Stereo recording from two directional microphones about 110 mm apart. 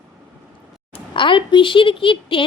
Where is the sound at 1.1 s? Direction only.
50° left (ahead or behind).